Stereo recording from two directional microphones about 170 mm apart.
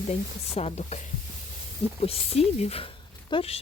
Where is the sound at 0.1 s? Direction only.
40° left (ahead or behind).